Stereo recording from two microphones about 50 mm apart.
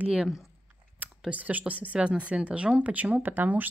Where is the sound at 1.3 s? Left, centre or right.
Right.